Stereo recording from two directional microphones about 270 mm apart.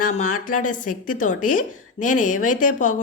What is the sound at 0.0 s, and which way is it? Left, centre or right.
A woman's voice, left.